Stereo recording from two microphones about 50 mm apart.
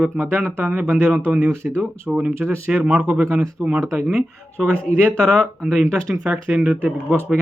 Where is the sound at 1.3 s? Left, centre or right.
Right.